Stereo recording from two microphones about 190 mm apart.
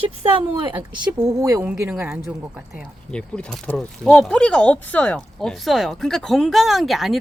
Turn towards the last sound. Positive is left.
turn(degrees=0)  # may be behind; listen again after turning